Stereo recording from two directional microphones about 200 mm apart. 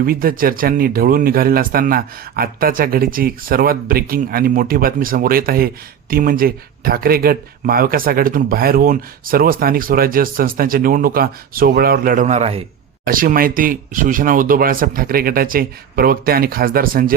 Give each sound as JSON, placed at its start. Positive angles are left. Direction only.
{"t": 0.0, "sound": "speech", "side_deg": -45}
{"t": 13.1, "sound": "speech", "side_deg": -45}